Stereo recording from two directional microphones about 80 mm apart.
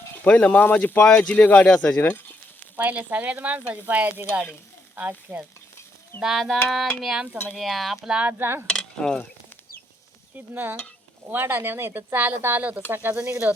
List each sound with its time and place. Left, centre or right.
0.3 s speech: centre
2.7 s speech: right
6.1 s speech: centre
8.3 s speech: right
8.6 s a sound: centre
10.3 s speech: right